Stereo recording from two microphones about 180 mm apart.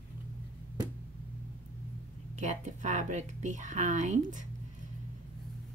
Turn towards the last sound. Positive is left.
turn(degrees=-45)  # may be behind; listen again after turning